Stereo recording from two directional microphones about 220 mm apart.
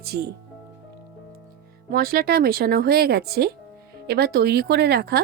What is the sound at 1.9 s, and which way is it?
Speech, 45° right (ahead or behind).